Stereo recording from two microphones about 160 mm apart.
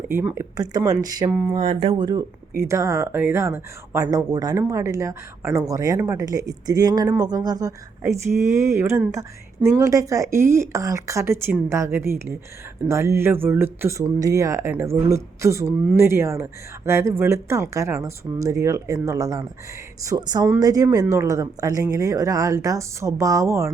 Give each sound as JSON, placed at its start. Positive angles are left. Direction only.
{"t": 0.1, "sound": "speech", "side_deg": -15}
{"t": 1.3, "sound": "speech", "side_deg": -5}
{"t": 1.5, "sound": "speech", "side_deg": -35}